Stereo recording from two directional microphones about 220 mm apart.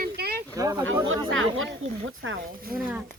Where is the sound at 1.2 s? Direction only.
60° right (ahead or behind).